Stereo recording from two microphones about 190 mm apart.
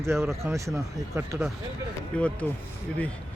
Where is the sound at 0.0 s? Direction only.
15° right (ahead or behind).